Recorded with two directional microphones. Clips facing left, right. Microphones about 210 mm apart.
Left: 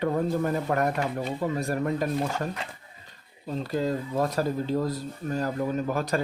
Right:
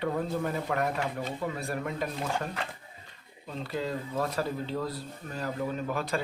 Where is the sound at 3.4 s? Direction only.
40° left (ahead or behind).